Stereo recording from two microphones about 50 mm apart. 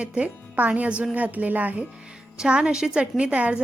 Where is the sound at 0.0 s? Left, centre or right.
Right.